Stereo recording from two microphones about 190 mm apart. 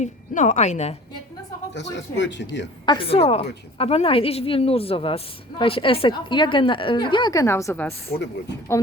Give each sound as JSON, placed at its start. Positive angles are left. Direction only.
{"t": 0.0, "sound": "a woman's voice", "side_deg": 40}
{"t": 1.7, "sound": "speech", "side_deg": 70}
{"t": 2.8, "sound": "a woman's voice", "side_deg": 25}